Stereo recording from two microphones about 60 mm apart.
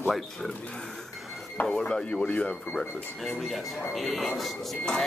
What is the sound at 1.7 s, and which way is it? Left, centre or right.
Speech, centre.